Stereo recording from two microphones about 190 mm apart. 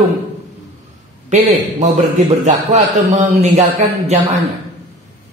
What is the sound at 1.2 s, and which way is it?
A man's voice, 40° right (ahead or behind).